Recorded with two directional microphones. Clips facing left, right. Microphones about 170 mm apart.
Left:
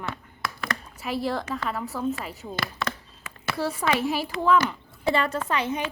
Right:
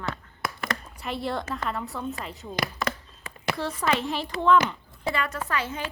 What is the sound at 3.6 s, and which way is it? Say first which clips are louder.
Speech: left 3 dB; 10° left (ahead or behind).